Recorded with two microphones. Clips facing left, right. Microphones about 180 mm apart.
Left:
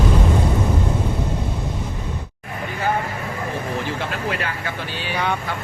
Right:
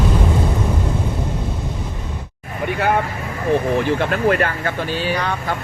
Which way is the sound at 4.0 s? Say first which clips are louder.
Right 8 dB; 55° right (ahead or behind).